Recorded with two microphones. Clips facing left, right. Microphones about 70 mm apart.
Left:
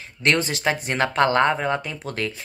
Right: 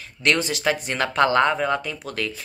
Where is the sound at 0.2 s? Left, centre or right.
Left.